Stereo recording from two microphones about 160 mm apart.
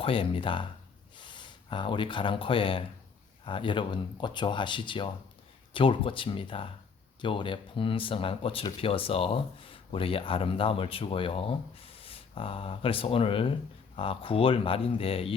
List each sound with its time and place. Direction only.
0.0 s speech: 35° left (ahead or behind)